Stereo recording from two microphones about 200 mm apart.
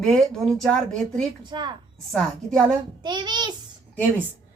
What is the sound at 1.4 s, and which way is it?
Speech, 20° right (ahead or behind).